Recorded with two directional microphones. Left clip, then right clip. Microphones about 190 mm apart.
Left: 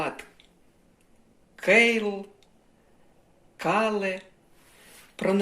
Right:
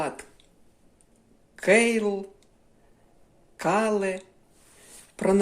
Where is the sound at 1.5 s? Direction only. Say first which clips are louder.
Left 1 dB; 20° right (ahead or behind).